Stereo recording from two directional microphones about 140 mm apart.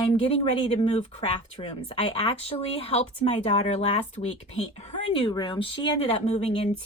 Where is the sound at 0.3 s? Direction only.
45° left (ahead or behind).